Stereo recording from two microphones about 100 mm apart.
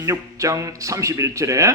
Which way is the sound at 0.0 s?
30° right (ahead or behind).